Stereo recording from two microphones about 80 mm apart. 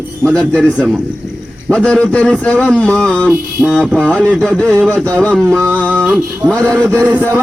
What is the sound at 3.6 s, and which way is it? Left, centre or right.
Music, centre.